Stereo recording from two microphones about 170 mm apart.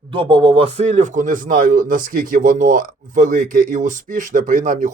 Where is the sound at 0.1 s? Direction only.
30° right (ahead or behind).